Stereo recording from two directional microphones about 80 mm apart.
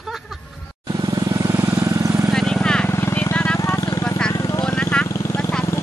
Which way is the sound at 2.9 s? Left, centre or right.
Left.